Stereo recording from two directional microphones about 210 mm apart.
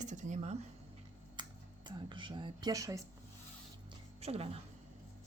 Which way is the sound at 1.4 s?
20° right (ahead or behind).